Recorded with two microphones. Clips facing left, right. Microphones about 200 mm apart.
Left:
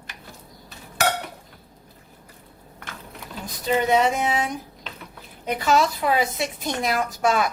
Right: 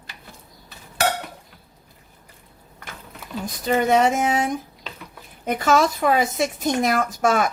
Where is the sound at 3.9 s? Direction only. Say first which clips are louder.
Right 3 dB; 45° right (ahead or behind).